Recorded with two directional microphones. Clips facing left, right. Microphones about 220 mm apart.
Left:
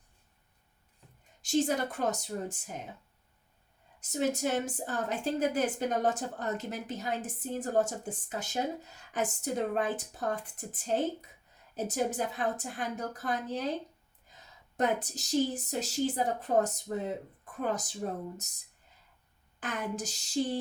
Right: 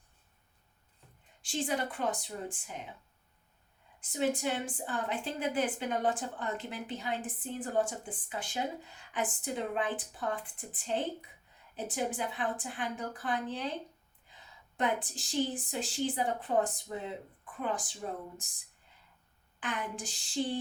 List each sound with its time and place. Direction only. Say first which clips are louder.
1.4 s a woman's voice: left 5 dB; 45° left (ahead or behind)
4.0 s a woman's voice: left 1 dB; 40° left (ahead or behind)
19.5 s speech: left 3 dB; 40° left (ahead or behind)